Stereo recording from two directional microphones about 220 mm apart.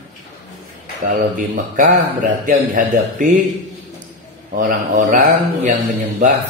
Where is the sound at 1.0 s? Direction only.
35° right (ahead or behind).